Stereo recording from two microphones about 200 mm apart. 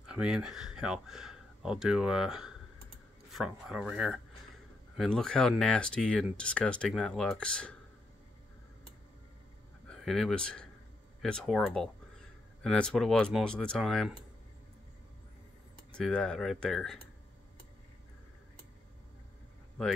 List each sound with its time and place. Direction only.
0.0 s speech: 5° right (ahead or behind)
9.8 s speech: centre (ahead or behind)
15.9 s speech: 5° left (ahead or behind)